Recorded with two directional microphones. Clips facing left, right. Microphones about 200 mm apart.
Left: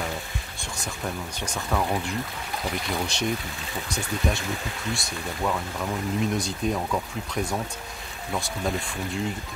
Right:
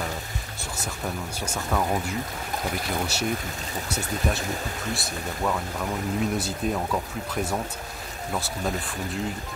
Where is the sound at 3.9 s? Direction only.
5° right (ahead or behind).